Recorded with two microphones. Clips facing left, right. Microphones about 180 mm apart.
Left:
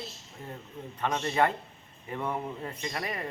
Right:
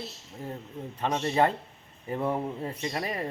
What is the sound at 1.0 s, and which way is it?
Speech, 30° right (ahead or behind).